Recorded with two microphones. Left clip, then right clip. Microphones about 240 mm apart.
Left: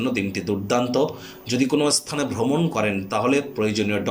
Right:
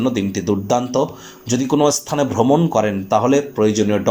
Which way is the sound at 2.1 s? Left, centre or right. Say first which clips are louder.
Right 8 dB; right.